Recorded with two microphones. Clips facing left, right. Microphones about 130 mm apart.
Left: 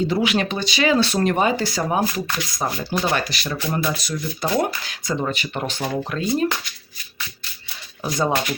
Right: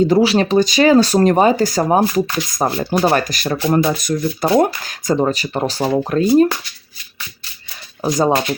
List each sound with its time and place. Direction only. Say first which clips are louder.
0.1 s speech: right 8 dB; 35° right (ahead or behind)
8.0 s speech: right 6 dB; 30° right (ahead or behind)